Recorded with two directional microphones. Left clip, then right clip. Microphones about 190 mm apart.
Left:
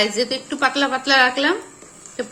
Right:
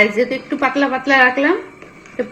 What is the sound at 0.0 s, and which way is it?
A woman's voice, 10° left (ahead or behind).